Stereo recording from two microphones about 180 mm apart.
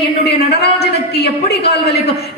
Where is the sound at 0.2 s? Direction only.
65° left (ahead or behind).